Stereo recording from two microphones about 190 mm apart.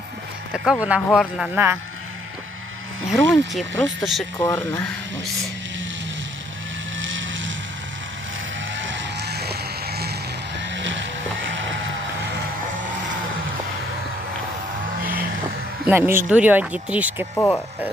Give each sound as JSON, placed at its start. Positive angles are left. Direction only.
{"t": 0.5, "sound": "speech", "side_deg": -5}
{"t": 3.1, "sound": "speech", "side_deg": 0}
{"t": 4.4, "sound": "speech", "side_deg": 15}
{"t": 7.0, "sound": "vehicle", "side_deg": -85}
{"t": 8.7, "sound": "vehicle", "side_deg": -75}
{"t": 10.6, "sound": "vehicle", "side_deg": -70}
{"t": 11.4, "sound": "music", "side_deg": -80}
{"t": 15.9, "sound": "speech", "side_deg": -10}
{"t": 17.3, "sound": "speech", "side_deg": 15}